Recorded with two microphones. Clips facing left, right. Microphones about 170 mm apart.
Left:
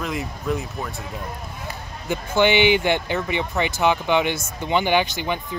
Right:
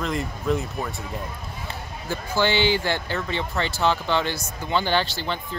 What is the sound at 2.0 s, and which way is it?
Speech, 20° left (ahead or behind).